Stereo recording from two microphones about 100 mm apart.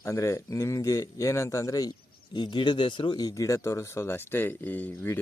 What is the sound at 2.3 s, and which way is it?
Speech, 50° left (ahead or behind).